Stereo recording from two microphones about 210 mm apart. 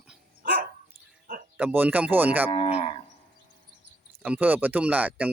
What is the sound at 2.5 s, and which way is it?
Moo, 25° left (ahead or behind).